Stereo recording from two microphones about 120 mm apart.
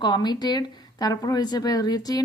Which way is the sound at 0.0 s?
35° left (ahead or behind).